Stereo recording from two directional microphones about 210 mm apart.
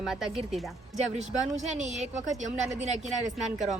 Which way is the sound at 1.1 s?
35° right (ahead or behind).